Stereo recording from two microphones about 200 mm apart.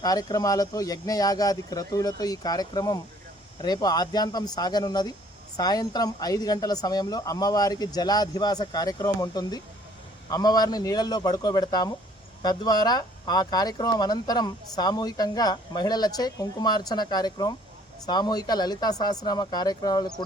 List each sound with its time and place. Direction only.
0.0 s speech: 20° left (ahead or behind)